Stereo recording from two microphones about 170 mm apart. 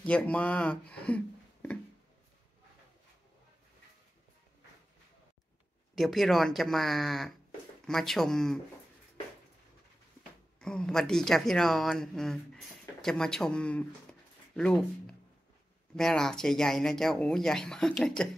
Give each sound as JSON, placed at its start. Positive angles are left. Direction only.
{"t": 0.0, "sound": "speech", "side_deg": 10}
{"t": 5.9, "sound": "speech", "side_deg": 0}
{"t": 10.6, "sound": "speech", "side_deg": 5}